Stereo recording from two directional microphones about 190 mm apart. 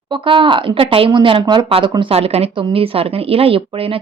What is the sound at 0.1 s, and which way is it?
Speech, 25° right (ahead or behind).